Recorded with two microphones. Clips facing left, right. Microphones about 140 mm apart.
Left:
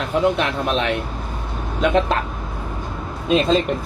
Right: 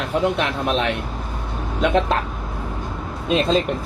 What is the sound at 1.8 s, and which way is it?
Speech, centre (ahead or behind).